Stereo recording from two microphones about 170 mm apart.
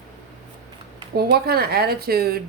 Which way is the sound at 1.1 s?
65° right (ahead or behind).